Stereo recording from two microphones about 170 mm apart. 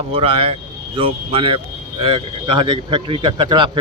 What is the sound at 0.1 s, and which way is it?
Speech, 35° right (ahead or behind).